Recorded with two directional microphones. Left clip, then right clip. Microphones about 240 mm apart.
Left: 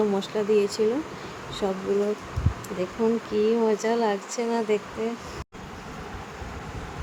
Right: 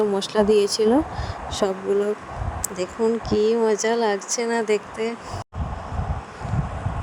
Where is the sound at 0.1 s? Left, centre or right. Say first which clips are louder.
Right 5 dB; right.